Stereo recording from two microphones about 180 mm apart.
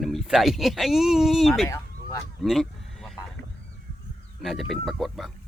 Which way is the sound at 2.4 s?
Centre (ahead or behind).